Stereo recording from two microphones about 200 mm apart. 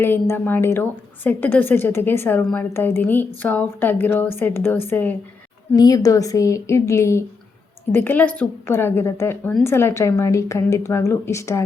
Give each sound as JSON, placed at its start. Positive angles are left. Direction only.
{"t": 0.0, "sound": "a woman's voice", "side_deg": 10}